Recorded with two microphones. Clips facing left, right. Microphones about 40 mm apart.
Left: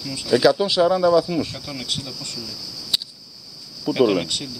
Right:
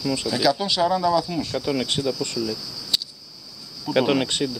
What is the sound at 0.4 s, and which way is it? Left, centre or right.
Speech, centre.